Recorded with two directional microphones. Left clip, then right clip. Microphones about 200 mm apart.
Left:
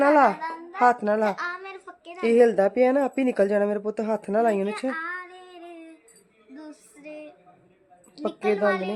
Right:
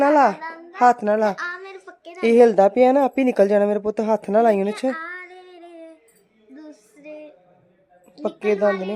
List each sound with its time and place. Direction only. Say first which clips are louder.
0.0 s a child's voice: right 2 dB; 15° right (ahead or behind)
6.5 s female singing: right 1 dB; 10° left (ahead or behind)
8.2 s a woman's voice: right 4 dB; 15° left (ahead or behind)